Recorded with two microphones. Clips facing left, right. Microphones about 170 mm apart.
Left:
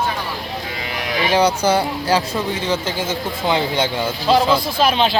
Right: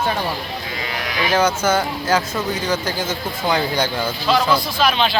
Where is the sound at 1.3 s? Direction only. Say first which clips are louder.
Left 2 dB; 30° left (ahead or behind).